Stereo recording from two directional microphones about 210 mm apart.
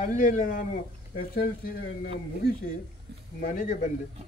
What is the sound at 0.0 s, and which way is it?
Speech, 40° left (ahead or behind).